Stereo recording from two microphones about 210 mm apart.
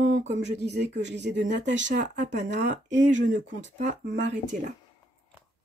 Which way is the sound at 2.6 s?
55° right (ahead or behind).